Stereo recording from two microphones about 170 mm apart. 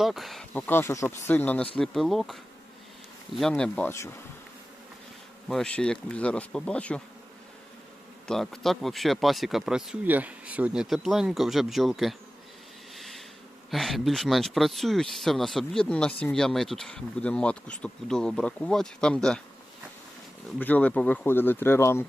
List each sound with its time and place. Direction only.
0.0 s speech: centre (ahead or behind)
0.7 s bee: 15° left (ahead or behind)
1.8 s speech: centre (ahead or behind)
3.3 s bee: 5° left (ahead or behind)
5.5 s bee: 5° left (ahead or behind)
8.3 s speech: centre (ahead or behind)
13.0 s a sound: centre (ahead or behind)
13.7 s speech: centre (ahead or behind)
20.6 s bee: 10° left (ahead or behind)